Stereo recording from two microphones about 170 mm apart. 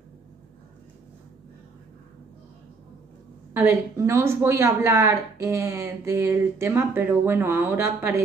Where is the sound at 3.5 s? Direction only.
15° right (ahead or behind).